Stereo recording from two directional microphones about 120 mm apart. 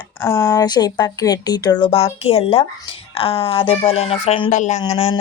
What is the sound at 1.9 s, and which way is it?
Speech, 55° left (ahead or behind).